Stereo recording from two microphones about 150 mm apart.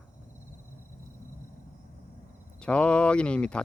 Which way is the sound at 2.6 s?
5° left (ahead or behind).